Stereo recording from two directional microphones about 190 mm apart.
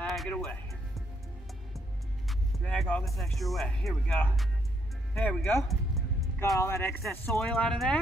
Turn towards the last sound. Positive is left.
turn(degrees=5)  # may be behind; listen again after turning